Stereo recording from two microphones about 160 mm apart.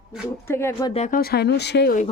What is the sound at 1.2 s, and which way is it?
Speech, 85° left.